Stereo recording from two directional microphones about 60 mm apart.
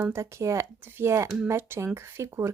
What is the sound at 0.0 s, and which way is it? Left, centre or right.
Speech, right.